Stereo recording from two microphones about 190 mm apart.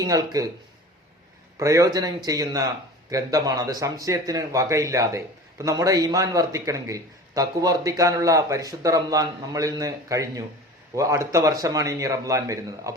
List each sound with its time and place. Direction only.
0.0 s speech: 20° right (ahead or behind)
1.5 s speech: 15° right (ahead or behind)